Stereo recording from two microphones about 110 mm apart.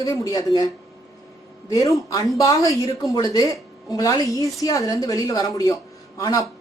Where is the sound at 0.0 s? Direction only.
35° left (ahead or behind).